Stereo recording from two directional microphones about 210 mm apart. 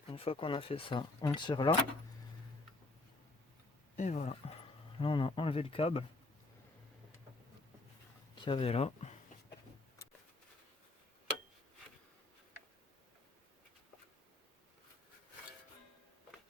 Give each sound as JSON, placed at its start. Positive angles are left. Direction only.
{"t": 0.1, "sound": "speech", "side_deg": 25}
{"t": 3.9, "sound": "speech", "side_deg": 35}
{"t": 8.4, "sound": "speech", "side_deg": 25}